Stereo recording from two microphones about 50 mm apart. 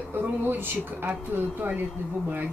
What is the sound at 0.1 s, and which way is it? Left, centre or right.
Speech, right.